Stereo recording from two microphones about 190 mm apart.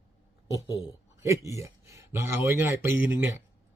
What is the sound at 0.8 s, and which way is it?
Speech, 15° right (ahead or behind).